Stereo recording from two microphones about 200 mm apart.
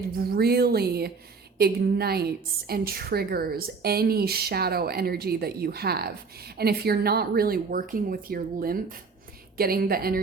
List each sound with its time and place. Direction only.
0.2 s a woman's voice: 50° right (ahead or behind)